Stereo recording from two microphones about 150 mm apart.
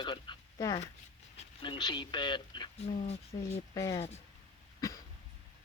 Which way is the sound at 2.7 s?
45° left (ahead or behind).